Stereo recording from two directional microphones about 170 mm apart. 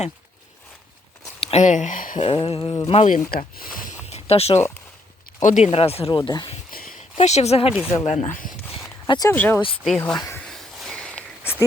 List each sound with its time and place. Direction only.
1.4 s speech: 40° left (ahead or behind)
2.2 s speech: 30° left (ahead or behind)
3.2 s speech: 60° left (ahead or behind)
4.0 s a sound: 40° left (ahead or behind)
5.4 s speech: 45° left (ahead or behind)
6.1 s speech: 25° left (ahead or behind)
6.7 s a sound: 55° left (ahead or behind)
7.2 s speech: 40° left (ahead or behind)
9.0 s speech: 20° left (ahead or behind)
9.3 s speech: 10° left (ahead or behind)
9.6 s speech: 30° left (ahead or behind)
9.8 s speech: 5° left (ahead or behind)
10.2 s speech: 15° left (ahead or behind)
10.4 s a sound: centre (ahead or behind)